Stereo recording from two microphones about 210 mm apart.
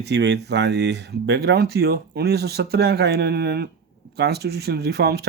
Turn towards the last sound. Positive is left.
turn(degrees=-50)  # may be behind; listen again after turning